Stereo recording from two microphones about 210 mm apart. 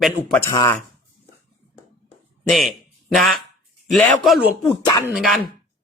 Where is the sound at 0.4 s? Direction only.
15° left (ahead or behind).